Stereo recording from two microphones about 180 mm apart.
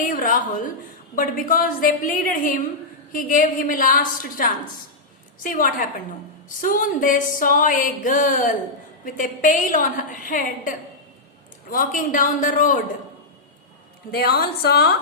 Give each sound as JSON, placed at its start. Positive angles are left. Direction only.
{"t": 0.0, "sound": "speech", "side_deg": 50}
{"t": 14.1, "sound": "a woman's voice", "side_deg": 60}